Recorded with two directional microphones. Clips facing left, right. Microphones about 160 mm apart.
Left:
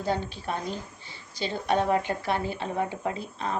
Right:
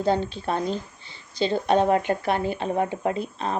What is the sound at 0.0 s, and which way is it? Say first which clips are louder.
Speech: right 6 dB; 25° right (ahead or behind).